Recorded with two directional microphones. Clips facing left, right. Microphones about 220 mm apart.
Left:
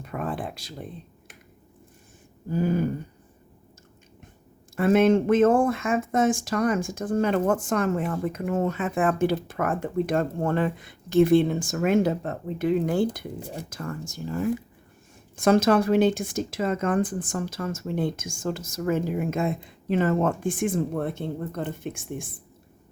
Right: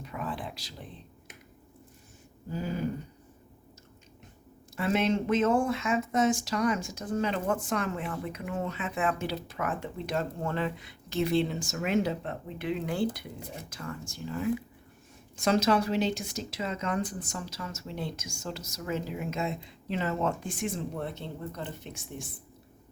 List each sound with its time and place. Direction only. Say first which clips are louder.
0.0 s a sound: left 6 dB; 55° left (ahead or behind)
2.5 s speech: left 9 dB; 50° left (ahead or behind)
4.8 s speech: left 8 dB; 50° left (ahead or behind)